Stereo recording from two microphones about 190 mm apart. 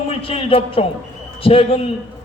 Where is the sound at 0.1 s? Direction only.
30° left (ahead or behind).